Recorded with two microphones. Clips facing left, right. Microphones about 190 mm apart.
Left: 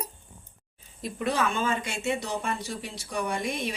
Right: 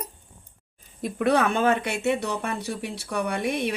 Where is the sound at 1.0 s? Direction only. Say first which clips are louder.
Right 6 dB; 60° right (ahead or behind).